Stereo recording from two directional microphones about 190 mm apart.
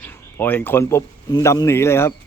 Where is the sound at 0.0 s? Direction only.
10° left (ahead or behind).